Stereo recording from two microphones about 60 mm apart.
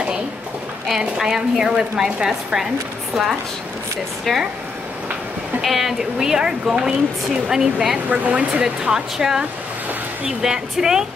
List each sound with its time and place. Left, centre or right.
0.8 s a woman's voice: centre
4.3 s speech: centre
5.6 s a woman's voice: centre
8.1 s speech: right
8.6 s a woman's voice: centre